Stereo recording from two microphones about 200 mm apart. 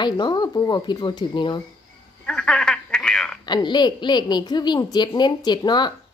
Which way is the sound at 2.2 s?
5° left (ahead or behind).